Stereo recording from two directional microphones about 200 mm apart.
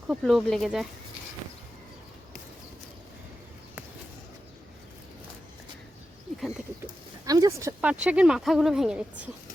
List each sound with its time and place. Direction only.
0.1 s speech: centre (ahead or behind)
6.8 s a sound: 20° right (ahead or behind)
8.0 s speech: 5° right (ahead or behind)